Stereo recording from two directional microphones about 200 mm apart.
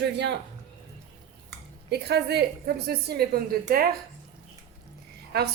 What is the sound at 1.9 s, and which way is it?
A woman's voice, 55° right (ahead or behind).